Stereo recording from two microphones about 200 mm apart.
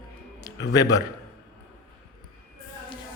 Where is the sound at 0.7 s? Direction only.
20° left (ahead or behind).